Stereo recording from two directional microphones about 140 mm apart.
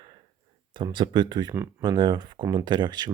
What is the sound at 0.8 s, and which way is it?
Speech, 35° right (ahead or behind).